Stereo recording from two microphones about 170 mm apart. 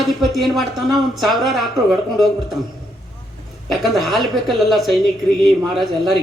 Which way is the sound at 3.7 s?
Centre (ahead or behind).